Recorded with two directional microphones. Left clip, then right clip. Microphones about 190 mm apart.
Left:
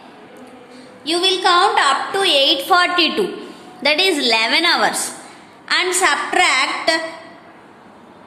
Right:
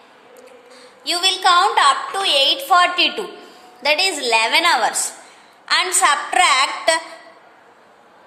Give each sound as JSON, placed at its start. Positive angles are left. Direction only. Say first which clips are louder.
{"t": 1.0, "sound": "a woman's voice", "louder": "even", "side_deg": -40}
{"t": 6.0, "sound": "a woman's voice", "louder": "right 1 dB", "side_deg": -25}